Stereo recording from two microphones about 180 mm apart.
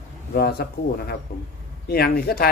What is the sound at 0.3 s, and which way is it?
Speech, 60° left (ahead or behind).